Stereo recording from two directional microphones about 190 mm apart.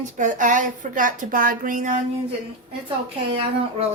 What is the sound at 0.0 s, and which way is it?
A woman's voice, 40° right (ahead or behind).